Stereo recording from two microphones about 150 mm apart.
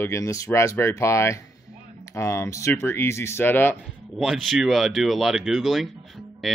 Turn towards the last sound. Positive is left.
turn(degrees=0)  # may be behind; listen again after turning